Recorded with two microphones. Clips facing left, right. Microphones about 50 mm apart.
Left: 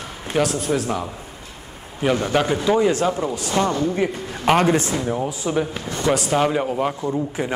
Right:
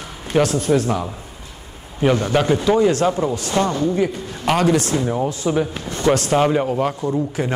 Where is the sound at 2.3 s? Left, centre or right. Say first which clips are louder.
Right 2 dB; centre.